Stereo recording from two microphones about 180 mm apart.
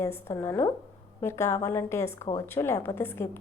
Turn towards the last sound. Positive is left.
turn(degrees=15)  # may be behind; listen again after turning